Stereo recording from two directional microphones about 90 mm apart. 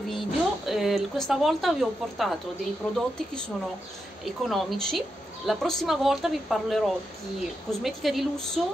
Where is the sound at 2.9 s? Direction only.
10° left (ahead or behind).